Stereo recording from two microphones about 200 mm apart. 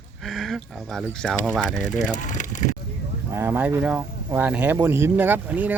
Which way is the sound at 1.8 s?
40° left (ahead or behind).